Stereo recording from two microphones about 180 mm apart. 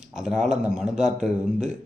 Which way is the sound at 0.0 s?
5° right (ahead or behind).